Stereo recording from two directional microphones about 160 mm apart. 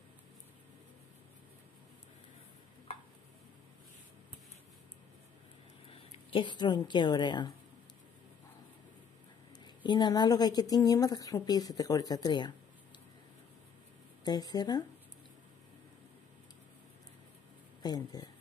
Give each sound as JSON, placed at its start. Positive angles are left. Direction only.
{"t": 5.9, "sound": "a woman's voice", "side_deg": 35}
{"t": 9.8, "sound": "a woman's voice", "side_deg": 30}
{"t": 14.2, "sound": "a woman's voice", "side_deg": 25}
{"t": 17.8, "sound": "a woman's voice", "side_deg": 25}